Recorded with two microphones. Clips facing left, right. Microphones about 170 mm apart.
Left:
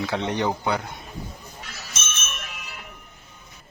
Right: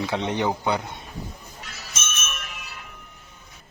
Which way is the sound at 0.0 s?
20° right (ahead or behind).